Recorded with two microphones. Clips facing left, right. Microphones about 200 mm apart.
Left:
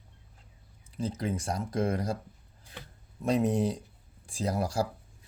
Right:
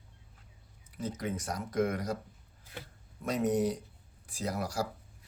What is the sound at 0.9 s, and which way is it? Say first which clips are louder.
Speech: left 3 dB; 30° left (ahead or behind).